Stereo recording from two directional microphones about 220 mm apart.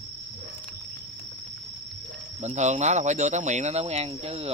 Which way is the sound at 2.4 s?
30° right (ahead or behind).